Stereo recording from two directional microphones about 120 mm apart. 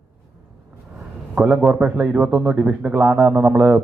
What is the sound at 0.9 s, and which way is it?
A man's voice, 10° right (ahead or behind).